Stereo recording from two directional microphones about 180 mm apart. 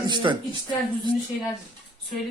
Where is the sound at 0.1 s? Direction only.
25° right (ahead or behind).